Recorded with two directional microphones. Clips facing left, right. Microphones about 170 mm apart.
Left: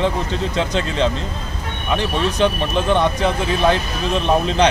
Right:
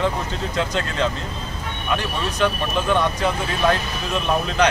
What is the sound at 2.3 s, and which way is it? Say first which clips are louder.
Speech: left 1 dB; 25° left (ahead or behind).